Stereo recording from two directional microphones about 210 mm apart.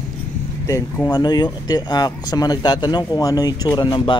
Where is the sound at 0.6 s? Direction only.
10° left (ahead or behind).